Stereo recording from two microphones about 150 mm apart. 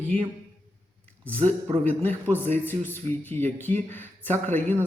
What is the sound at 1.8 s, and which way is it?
Speech, 10° left (ahead or behind).